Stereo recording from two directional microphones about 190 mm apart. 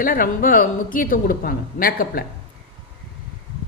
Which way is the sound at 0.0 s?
45° left (ahead or behind).